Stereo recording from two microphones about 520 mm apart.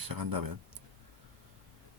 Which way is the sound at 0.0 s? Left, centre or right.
Right.